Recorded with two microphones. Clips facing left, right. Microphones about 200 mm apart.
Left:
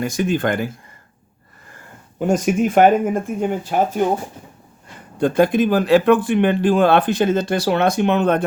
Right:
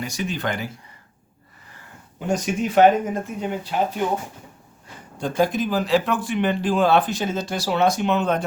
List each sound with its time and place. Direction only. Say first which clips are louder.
0.0 s speech: left 7 dB; 50° left (ahead or behind)
1.7 s speech: left 3 dB; 50° left (ahead or behind)
5.2 s speech: left 6 dB; 60° left (ahead or behind)